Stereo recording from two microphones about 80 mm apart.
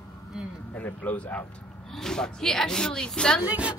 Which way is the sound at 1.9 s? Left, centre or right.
Centre.